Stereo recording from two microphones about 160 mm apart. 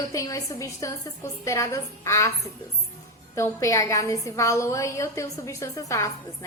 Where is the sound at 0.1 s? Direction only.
20° left (ahead or behind).